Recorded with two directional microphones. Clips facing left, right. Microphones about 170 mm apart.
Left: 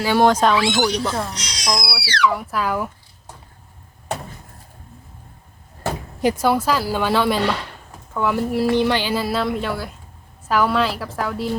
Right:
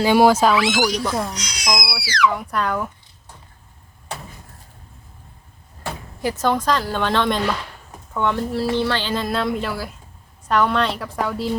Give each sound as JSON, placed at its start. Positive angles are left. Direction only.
{"t": 0.0, "sound": "speech", "side_deg": -15}
{"t": 0.3, "sound": "speech", "side_deg": -5}
{"t": 0.5, "sound": "speech", "side_deg": 30}
{"t": 0.9, "sound": "speech", "side_deg": -5}
{"t": 1.4, "sound": "speech", "side_deg": 30}
{"t": 2.3, "sound": "speech", "side_deg": 5}
{"t": 6.2, "sound": "a woman's voice", "side_deg": 10}